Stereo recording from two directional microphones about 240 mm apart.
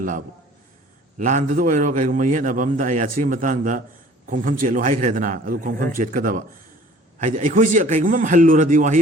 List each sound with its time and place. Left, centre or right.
1.2 s a man's voice: right